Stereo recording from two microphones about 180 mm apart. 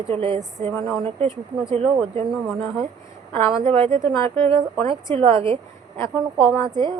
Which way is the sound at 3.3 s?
30° right (ahead or behind).